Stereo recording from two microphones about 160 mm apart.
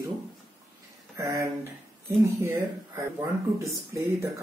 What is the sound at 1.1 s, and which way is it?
Speech, 20° right (ahead or behind).